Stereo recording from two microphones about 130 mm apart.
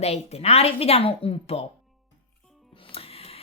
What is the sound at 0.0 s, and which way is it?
Speech, 55° left (ahead or behind).